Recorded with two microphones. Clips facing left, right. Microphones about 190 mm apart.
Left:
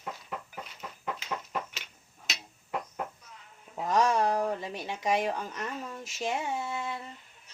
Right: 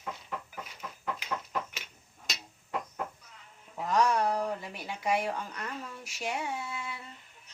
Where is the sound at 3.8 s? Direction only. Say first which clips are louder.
Left 1 dB; 25° left (ahead or behind).